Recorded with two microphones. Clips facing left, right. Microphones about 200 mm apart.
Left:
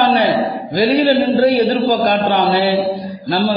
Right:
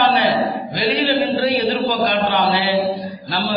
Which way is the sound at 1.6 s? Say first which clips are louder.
Left 4 dB; 45° left (ahead or behind).